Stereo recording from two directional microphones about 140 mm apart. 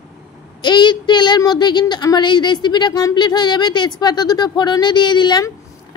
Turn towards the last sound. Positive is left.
turn(degrees=30)  # may be behind; listen again after turning